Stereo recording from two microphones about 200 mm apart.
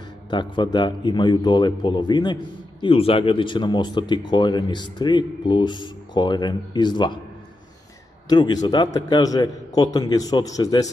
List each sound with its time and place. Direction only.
0.3 s speech: 20° left (ahead or behind)
8.3 s speech: 20° left (ahead or behind)